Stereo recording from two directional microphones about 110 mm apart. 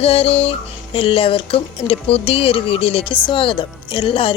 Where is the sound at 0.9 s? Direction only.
55° left (ahead or behind).